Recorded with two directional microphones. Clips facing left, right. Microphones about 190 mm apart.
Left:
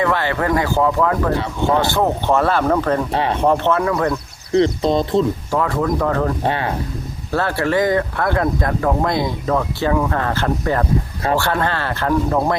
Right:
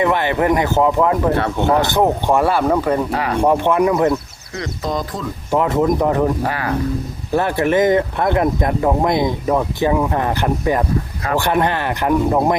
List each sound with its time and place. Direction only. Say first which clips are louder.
0.0 s speech: right 2 dB; 20° right (ahead or behind)
1.3 s speech: right 2 dB; 60° right (ahead or behind)
1.8 s speech: right 2 dB; 20° right (ahead or behind)
3.1 s speech: left 1 dB; 25° left (ahead or behind)
3.4 s speech: right 3 dB; 10° right (ahead or behind)
4.5 s speech: left 8 dB; 30° left (ahead or behind)
5.5 s speech: right 3 dB; 20° right (ahead or behind)
6.4 s speech: even; 25° left (ahead or behind)
7.3 s speech: right 2 dB; 15° right (ahead or behind)